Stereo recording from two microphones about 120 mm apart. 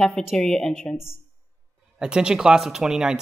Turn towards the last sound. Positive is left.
turn(degrees=-5)  # may be behind; listen again after turning